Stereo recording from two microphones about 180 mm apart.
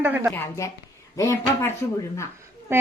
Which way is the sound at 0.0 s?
10° right (ahead or behind).